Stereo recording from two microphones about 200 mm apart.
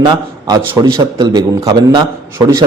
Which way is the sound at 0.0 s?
20° right (ahead or behind).